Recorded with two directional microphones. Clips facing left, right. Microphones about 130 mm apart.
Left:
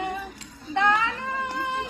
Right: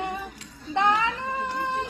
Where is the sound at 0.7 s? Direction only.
20° right (ahead or behind).